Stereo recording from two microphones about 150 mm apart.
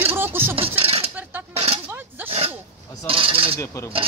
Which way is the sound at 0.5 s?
40° right (ahead or behind).